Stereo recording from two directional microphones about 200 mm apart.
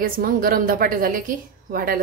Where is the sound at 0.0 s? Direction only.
45° right (ahead or behind).